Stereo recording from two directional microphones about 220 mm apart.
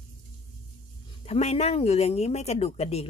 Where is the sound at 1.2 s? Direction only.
30° left (ahead or behind).